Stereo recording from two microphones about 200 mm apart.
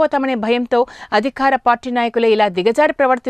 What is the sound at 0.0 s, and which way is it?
Speech, centre (ahead or behind).